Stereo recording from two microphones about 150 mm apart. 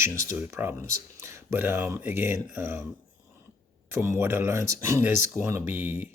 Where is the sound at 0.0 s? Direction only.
15° right (ahead or behind).